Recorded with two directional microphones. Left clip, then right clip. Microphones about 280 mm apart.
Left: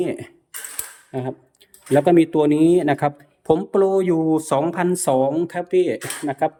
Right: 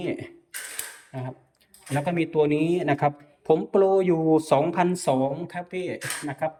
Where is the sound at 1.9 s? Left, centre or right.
Left.